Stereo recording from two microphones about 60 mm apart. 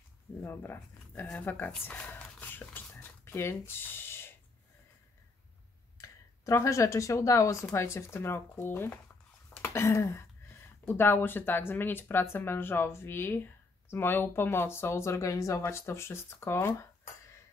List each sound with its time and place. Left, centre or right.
0.4 s speech: left
2.4 s a sound: left
5.9 s clicking: left
6.6 s speech: left
9.6 s a sound: left
10.9 s speech: left
15.9 s speech: left